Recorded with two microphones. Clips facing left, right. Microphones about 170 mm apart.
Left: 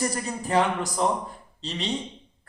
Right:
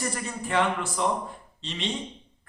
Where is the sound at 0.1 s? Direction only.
40° left (ahead or behind).